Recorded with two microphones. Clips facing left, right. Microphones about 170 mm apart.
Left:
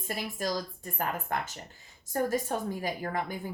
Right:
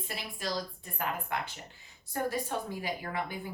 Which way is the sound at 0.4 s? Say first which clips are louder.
Left 1 dB; 45° left (ahead or behind).